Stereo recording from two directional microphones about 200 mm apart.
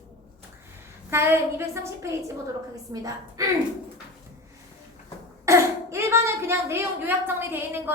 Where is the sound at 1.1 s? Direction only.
10° right (ahead or behind).